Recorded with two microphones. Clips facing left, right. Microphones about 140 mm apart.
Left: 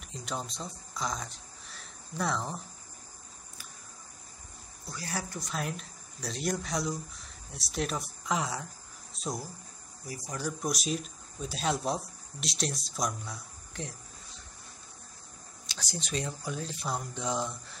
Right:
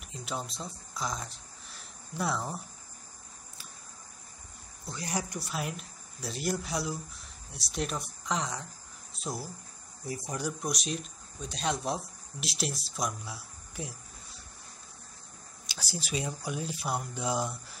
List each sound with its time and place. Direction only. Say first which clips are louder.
0.1 s speech: even; 5° right (ahead or behind)
4.8 s speech: right 2 dB; 20° right (ahead or behind)
5.5 s speech: even; 5° right (ahead or behind)
10.0 s speech: right 3 dB; 25° right (ahead or behind)
10.6 s speech: left 2 dB; centre (ahead or behind)
15.6 s speech: even; 5° right (ahead or behind)